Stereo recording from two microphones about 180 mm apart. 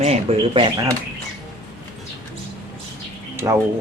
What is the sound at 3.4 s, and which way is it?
Speech, 15° right (ahead or behind).